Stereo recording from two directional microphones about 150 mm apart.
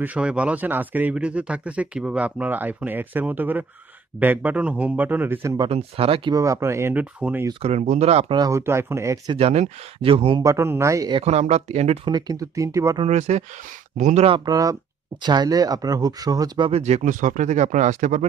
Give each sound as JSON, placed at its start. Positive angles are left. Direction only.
{"t": 0.0, "sound": "speech", "side_deg": -10}
{"t": 5.7, "sound": "speech", "side_deg": -40}
{"t": 6.3, "sound": "speech", "side_deg": -20}
{"t": 7.6, "sound": "speech", "side_deg": -50}
{"t": 8.4, "sound": "speech", "side_deg": -20}
{"t": 9.3, "sound": "speech", "side_deg": -45}
{"t": 10.4, "sound": "speech", "side_deg": -20}
{"t": 11.2, "sound": "speech", "side_deg": -45}
{"t": 12.1, "sound": "speech", "side_deg": -25}
{"t": 13.0, "sound": "speech", "side_deg": -45}
{"t": 14.2, "sound": "speech", "side_deg": -30}
{"t": 16.8, "sound": "speech", "side_deg": -50}